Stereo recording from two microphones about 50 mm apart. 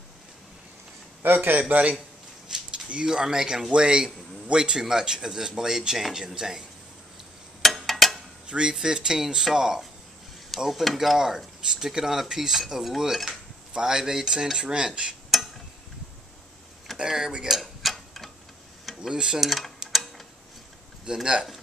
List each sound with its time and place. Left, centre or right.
1.2 s a man's voice: right
1.7 s a man's voice: right; by 6.6 s centre
7.6 s a sound: centre
8.5 s a man's voice: centre
11.1 s a man's voice: centre
17.0 s a man's voice: centre
17.5 s mechanisms: centre
18.9 s a man's voice: centre
19.4 s a sound: centre
21.0 s a man's voice: centre